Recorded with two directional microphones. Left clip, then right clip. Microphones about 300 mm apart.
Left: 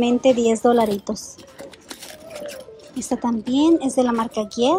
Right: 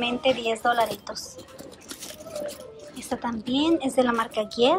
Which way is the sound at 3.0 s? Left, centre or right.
Centre.